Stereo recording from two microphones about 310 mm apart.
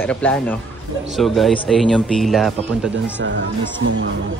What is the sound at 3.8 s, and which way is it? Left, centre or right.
Speech, right.